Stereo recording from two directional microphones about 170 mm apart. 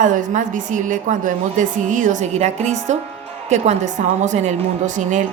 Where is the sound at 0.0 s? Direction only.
50° right (ahead or behind).